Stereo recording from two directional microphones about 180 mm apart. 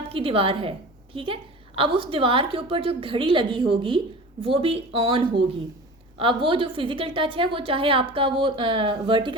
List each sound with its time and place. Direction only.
0.1 s a woman's voice: 30° right (ahead or behind)